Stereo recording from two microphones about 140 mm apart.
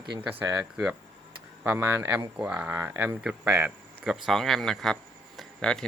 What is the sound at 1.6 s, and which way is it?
Speech, 15° right (ahead or behind).